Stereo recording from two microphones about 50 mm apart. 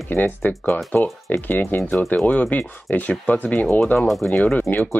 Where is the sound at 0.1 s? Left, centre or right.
Left.